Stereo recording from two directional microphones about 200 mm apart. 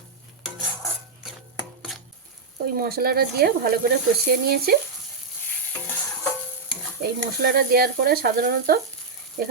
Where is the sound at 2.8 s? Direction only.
50° right (ahead or behind).